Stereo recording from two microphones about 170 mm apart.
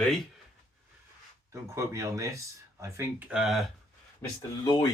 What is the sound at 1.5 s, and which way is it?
Speech, 20° right (ahead or behind).